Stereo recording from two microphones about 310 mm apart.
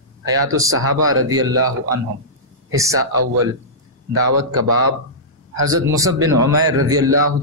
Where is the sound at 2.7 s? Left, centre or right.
Centre.